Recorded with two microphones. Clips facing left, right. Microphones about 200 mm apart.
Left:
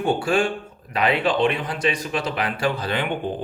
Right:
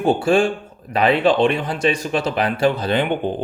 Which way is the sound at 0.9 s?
30° right (ahead or behind).